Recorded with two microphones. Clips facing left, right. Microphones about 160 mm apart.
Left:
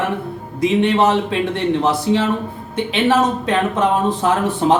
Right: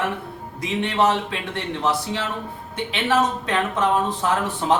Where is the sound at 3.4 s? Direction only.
20° left (ahead or behind).